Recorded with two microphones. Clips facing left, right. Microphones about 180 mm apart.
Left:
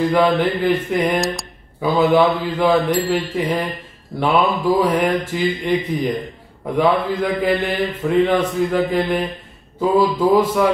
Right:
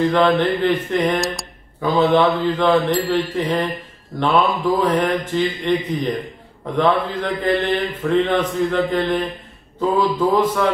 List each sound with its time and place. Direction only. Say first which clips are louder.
0.1 s speech: even; 10° left (ahead or behind)